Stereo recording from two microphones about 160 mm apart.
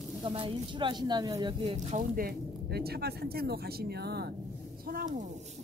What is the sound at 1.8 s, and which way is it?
Speech, 60° right (ahead or behind).